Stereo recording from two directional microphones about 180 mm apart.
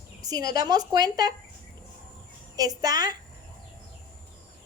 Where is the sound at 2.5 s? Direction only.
20° right (ahead or behind).